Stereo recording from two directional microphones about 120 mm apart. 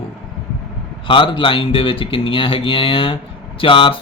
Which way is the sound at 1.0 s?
45° left (ahead or behind).